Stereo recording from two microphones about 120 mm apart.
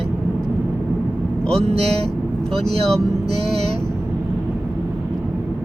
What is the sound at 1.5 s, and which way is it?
Speech, 60° right (ahead or behind).